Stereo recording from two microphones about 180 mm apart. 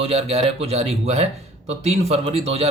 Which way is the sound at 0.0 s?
30° right (ahead or behind).